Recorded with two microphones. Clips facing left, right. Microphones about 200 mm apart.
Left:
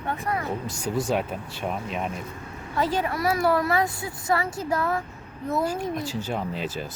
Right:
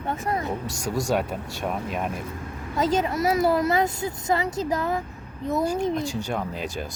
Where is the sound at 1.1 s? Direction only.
Centre (ahead or behind).